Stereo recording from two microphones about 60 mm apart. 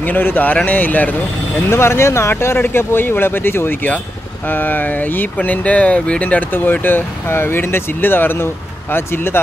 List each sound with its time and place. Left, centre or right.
0.0 s speech: left
1.7 s speech: left
6.5 s speech: left